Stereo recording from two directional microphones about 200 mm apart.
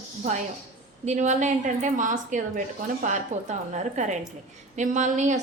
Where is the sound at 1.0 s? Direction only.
35° right (ahead or behind).